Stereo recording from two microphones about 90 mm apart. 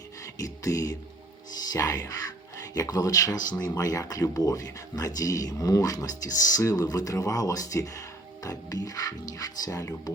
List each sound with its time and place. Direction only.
0.3 s music: 40° left (ahead or behind)
1.7 s speech: 40° left (ahead or behind)